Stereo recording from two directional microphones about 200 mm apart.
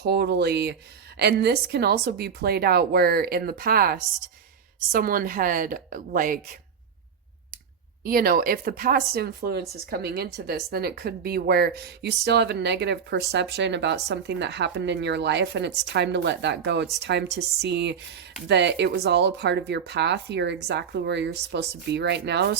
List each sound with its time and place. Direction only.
0.0 s a woman's voice: 55° right (ahead or behind)
8.0 s a woman's voice: 50° right (ahead or behind)